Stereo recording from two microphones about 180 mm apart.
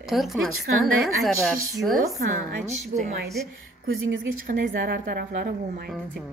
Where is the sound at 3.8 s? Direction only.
60° right (ahead or behind).